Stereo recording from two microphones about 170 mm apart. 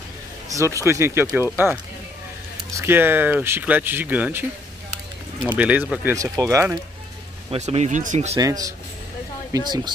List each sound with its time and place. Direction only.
0.5 s speech: 20° right (ahead or behind)
2.7 s speech: 15° right (ahead or behind)
7.5 s speech: 40° right (ahead or behind)
8.4 s speech: 20° right (ahead or behind)